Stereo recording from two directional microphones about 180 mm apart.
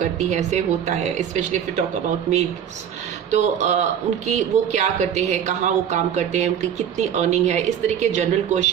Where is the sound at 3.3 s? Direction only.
40° right (ahead or behind).